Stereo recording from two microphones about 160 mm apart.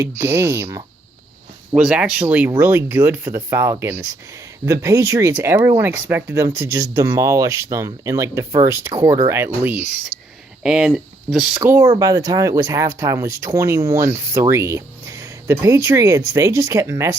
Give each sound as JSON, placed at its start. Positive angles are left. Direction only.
{"t": 0.2, "sound": "speech", "side_deg": -15}
{"t": 11.9, "sound": "speech", "side_deg": -20}